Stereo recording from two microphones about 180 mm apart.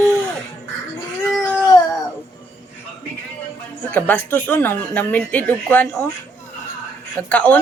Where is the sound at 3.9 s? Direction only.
10° left (ahead or behind).